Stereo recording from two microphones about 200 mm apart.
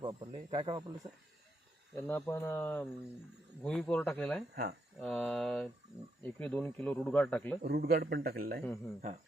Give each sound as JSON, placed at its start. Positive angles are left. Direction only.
{"t": 0.0, "sound": "speech", "side_deg": -25}
{"t": 2.0, "sound": "speech", "side_deg": 10}
{"t": 7.6, "sound": "a man's voice", "side_deg": -55}